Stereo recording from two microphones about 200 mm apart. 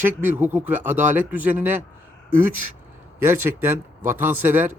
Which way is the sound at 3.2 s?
10° right (ahead or behind).